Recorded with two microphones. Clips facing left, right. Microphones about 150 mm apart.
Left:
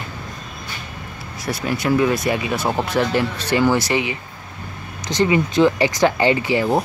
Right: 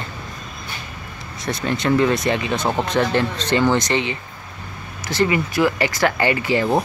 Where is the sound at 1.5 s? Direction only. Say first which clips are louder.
Even; 5° left (ahead or behind).